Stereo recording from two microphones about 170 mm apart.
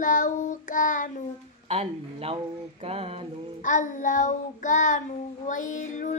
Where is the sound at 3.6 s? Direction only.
50° left (ahead or behind).